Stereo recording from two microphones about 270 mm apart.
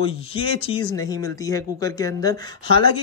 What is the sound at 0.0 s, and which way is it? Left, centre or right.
A man's voice, left.